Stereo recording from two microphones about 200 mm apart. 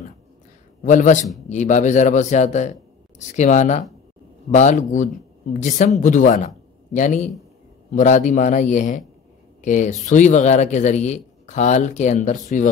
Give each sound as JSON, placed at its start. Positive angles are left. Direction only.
{"t": 0.8, "sound": "speech", "side_deg": 40}